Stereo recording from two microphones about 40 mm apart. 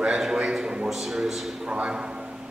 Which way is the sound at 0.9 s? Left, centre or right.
Centre.